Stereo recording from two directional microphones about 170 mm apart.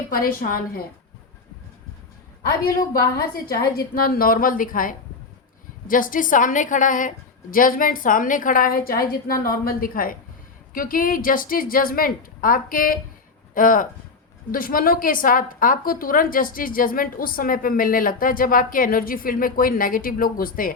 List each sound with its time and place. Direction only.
0.1 s a woman's voice: 55° left (ahead or behind)
2.6 s a woman's voice: 60° left (ahead or behind)